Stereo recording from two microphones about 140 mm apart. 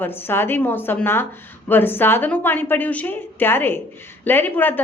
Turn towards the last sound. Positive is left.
turn(degrees=15)  # may be behind; listen again after turning